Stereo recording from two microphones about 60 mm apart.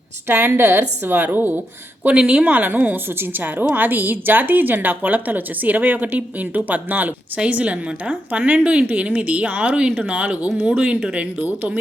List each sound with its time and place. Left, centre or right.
0.3 s a woman's voice: right
2.0 s a woman's voice: centre